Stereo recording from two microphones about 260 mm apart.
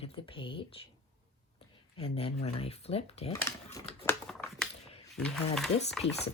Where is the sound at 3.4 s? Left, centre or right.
Centre.